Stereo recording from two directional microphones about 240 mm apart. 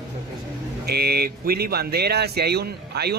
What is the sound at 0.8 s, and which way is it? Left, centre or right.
Speech, right.